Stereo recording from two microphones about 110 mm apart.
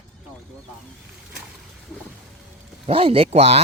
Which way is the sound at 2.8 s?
55° right (ahead or behind).